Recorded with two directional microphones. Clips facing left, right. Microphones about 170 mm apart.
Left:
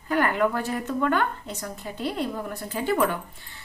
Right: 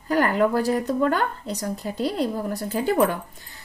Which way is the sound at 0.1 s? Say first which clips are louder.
Right 3 dB; 35° right (ahead or behind).